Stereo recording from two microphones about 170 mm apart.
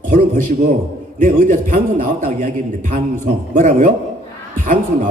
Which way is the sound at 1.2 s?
50° right (ahead or behind).